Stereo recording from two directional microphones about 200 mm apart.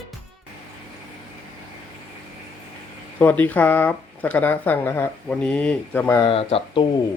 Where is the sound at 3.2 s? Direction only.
10° left (ahead or behind).